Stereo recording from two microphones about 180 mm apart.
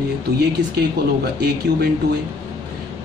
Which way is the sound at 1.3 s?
65° right (ahead or behind).